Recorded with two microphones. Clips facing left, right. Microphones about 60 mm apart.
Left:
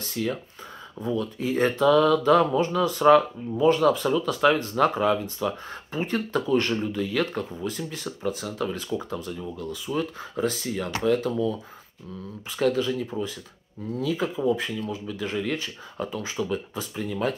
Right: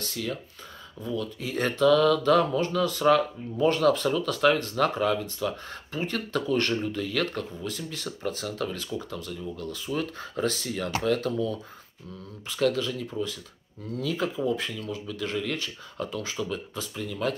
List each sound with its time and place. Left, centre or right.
0.0 s speech: left
9.4 s speech: centre